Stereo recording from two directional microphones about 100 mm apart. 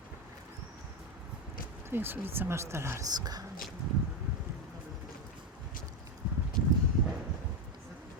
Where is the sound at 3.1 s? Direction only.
40° right (ahead or behind).